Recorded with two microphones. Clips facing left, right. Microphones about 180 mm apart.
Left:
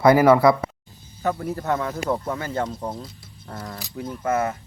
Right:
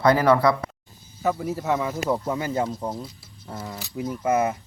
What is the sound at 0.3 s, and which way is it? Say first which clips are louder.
Speech: left 3 dB; 25° left (ahead or behind).